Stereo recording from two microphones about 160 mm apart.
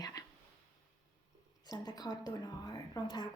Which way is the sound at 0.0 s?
25° left (ahead or behind).